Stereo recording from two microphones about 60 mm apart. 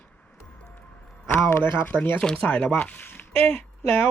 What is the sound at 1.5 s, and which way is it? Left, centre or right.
Speech, left.